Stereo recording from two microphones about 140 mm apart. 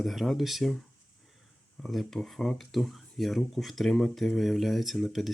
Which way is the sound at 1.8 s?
Centre (ahead or behind).